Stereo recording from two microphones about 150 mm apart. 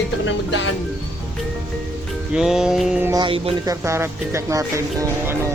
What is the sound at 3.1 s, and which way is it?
Speech, 35° right (ahead or behind).